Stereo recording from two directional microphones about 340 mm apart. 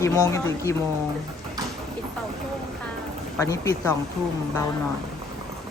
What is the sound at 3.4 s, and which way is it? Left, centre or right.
Speech, centre.